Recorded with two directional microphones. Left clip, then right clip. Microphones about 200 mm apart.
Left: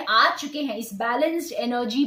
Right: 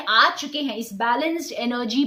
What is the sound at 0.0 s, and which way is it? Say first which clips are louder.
Speech: right 1 dB; 30° right (ahead or behind).